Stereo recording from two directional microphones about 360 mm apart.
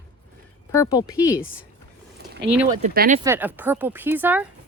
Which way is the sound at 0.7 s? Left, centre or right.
Centre.